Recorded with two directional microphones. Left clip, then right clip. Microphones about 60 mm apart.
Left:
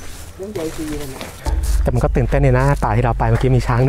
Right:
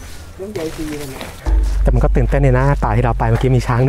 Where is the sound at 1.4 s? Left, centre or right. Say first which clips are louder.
Even; left.